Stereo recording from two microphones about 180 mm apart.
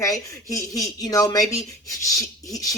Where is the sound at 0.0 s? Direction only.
20° left (ahead or behind).